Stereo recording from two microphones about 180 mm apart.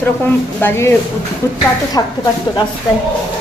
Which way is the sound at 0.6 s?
15° left (ahead or behind).